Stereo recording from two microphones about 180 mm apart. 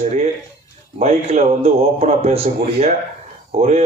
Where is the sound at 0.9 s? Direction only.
35° right (ahead or behind).